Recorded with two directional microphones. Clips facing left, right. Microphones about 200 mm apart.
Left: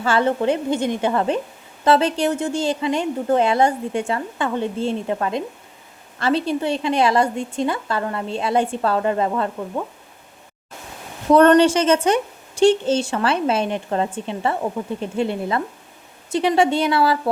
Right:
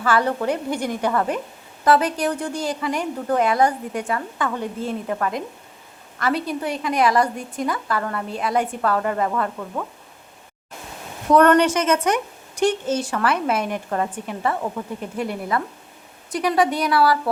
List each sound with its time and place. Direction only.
0.0 s a woman's voice: 25° left (ahead or behind)
11.3 s a woman's voice: 25° left (ahead or behind)